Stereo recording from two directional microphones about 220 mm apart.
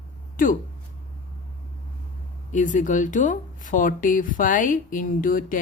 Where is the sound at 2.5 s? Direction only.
35° left (ahead or behind).